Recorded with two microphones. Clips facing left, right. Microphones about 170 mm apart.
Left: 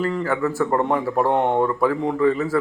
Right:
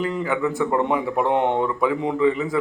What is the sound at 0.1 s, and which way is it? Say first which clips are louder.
A man's voice: left 1 dB; 5° right (ahead or behind).